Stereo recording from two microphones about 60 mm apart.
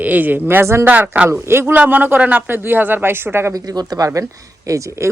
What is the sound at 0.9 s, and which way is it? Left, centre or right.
Speech, right.